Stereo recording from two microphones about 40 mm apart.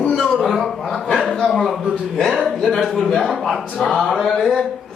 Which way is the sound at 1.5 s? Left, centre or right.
Centre.